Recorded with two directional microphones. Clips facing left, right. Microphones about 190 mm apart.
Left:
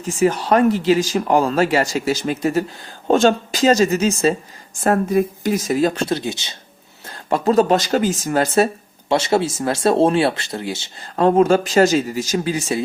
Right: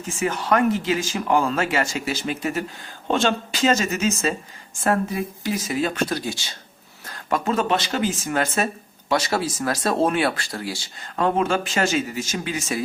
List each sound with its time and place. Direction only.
0.0 s speech: 35° left (ahead or behind)
4.8 s speech: 45° left (ahead or behind); by 6.6 s 20° left (ahead or behind)
7.3 s speech: 35° left (ahead or behind)
11.2 s speech: 35° left (ahead or behind)